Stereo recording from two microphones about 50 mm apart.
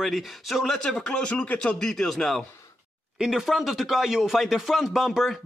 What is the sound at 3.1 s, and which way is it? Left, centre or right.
Speech, centre.